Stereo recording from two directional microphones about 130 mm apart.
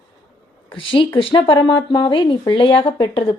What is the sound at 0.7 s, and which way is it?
Speech, 45° left (ahead or behind).